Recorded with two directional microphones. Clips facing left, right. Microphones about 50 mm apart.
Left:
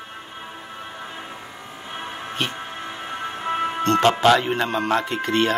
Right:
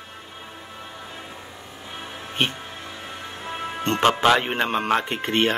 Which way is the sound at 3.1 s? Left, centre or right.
Left.